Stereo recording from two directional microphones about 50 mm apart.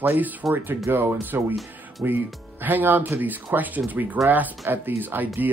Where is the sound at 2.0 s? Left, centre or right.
Right.